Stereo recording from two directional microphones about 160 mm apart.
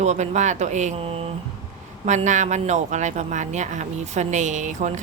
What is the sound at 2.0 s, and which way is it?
Speech, 50° right (ahead or behind).